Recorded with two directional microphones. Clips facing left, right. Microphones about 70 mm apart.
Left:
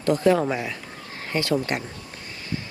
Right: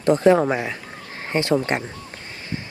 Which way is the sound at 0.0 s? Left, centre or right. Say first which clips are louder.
Right 4 dB; right.